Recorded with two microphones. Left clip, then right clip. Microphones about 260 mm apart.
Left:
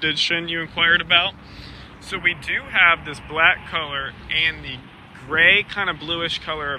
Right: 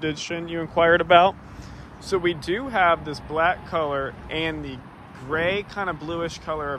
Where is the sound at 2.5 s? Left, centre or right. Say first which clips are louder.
Left 3 dB; right.